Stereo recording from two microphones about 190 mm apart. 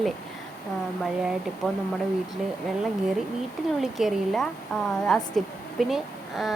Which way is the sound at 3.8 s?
Centre (ahead or behind).